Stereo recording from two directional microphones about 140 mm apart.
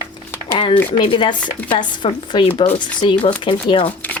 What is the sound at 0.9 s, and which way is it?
Speech, 35° left (ahead or behind).